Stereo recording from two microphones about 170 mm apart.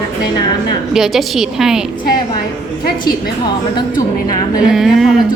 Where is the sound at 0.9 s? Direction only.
Centre (ahead or behind).